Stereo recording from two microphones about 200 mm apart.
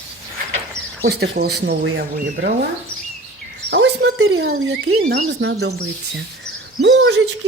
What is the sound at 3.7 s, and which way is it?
Speech, 65° right (ahead or behind).